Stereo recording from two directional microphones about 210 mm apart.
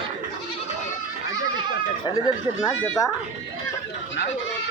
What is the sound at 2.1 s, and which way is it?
Speech, 20° left (ahead or behind).